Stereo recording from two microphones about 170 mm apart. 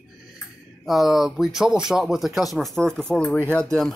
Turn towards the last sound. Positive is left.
turn(degrees=0)  # may be behind; listen again after turning